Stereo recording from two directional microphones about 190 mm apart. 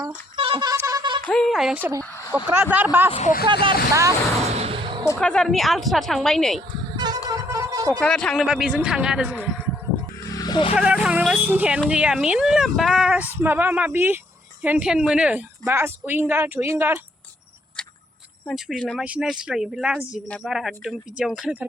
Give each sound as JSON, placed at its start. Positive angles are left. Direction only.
{"t": 0.3, "sound": "a sound", "side_deg": -25}
{"t": 1.2, "sound": "speech", "side_deg": 5}
{"t": 2.0, "sound": "a sound", "side_deg": 15}
{"t": 2.3, "sound": "speech", "side_deg": -10}
{"t": 3.1, "sound": "speech", "side_deg": 35}
{"t": 3.5, "sound": "speech", "side_deg": -25}
{"t": 4.4, "sound": "a sound", "side_deg": -35}
{"t": 5.0, "sound": "speech", "side_deg": 5}
{"t": 6.6, "sound": "music", "side_deg": -20}
{"t": 8.0, "sound": "speech", "side_deg": 5}
{"t": 10.2, "sound": "music", "side_deg": 20}
{"t": 10.8, "sound": "speech", "side_deg": -5}
{"t": 17.8, "sound": "a sound", "side_deg": 5}
{"t": 18.4, "sound": "speech", "side_deg": 0}